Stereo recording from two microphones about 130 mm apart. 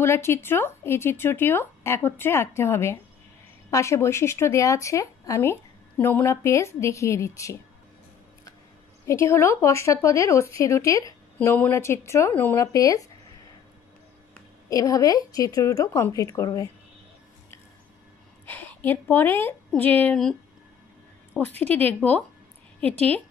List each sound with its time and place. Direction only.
0.0 s speech: 20° left (ahead or behind)
9.0 s speech: 20° left (ahead or behind)
11.3 s speech: 15° left (ahead or behind)
14.7 s speech: 25° left (ahead or behind)
18.4 s a woman's voice: 15° left (ahead or behind)